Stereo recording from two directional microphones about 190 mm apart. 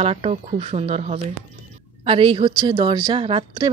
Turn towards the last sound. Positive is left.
turn(degrees=-25)  # may be behind; listen again after turning